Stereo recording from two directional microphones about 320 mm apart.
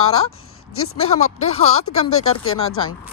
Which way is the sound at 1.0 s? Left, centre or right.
Left.